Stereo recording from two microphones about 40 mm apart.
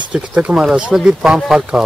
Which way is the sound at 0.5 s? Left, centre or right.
Centre.